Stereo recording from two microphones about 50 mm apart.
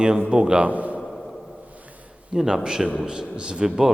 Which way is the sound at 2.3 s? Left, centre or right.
Centre.